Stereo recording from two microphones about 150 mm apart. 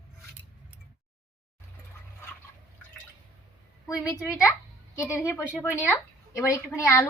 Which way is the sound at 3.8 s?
25° left (ahead or behind).